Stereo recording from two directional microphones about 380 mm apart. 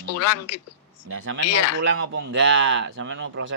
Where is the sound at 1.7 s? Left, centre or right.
Right.